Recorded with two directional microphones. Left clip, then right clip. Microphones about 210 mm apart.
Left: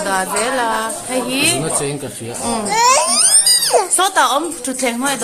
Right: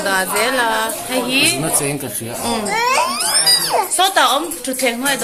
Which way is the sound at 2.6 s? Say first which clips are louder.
Left 4 dB; 55° left (ahead or behind).